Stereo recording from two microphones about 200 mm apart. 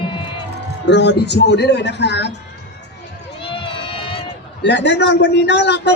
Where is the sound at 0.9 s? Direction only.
60° left (ahead or behind).